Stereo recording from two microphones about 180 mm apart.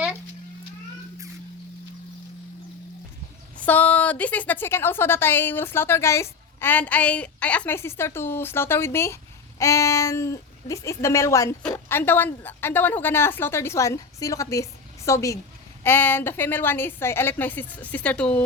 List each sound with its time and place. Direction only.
3.7 s a woman's voice: 10° left (ahead or behind)